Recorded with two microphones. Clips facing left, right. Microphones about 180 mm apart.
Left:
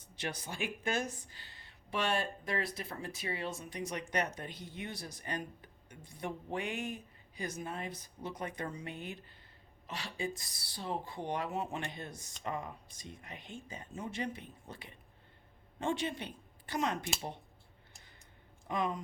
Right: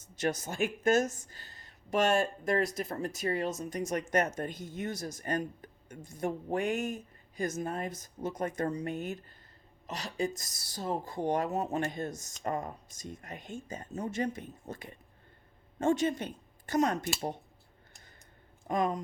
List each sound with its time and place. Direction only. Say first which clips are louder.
0.0 s speech: right 9 dB; 45° right (ahead or behind)
18.7 s speech: right 5 dB; 45° right (ahead or behind)